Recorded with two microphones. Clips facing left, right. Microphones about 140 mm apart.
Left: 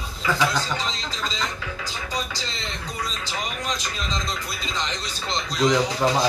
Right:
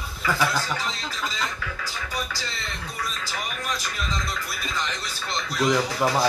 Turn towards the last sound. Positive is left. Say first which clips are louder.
# left 2 dB
turn(degrees=20)  # may be behind; listen again after turning